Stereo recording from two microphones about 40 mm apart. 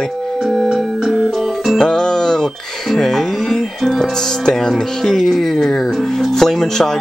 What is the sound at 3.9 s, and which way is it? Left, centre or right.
Speech, centre.